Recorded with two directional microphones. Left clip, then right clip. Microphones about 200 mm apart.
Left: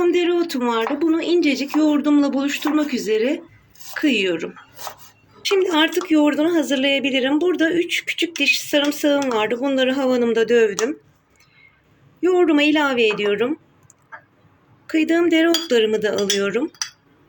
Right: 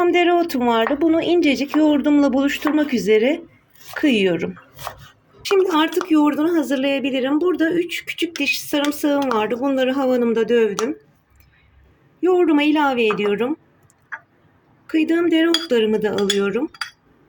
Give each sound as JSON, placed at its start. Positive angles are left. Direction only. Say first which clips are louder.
{"t": 0.0, "sound": "speech", "louder": "right 2 dB", "side_deg": -40}
{"t": 12.2, "sound": "speech", "louder": "even", "side_deg": -35}
{"t": 14.8, "sound": "speech", "louder": "even", "side_deg": -35}